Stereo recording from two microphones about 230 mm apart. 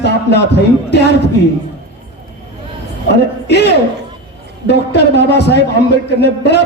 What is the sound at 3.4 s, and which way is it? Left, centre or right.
A man's voice, left.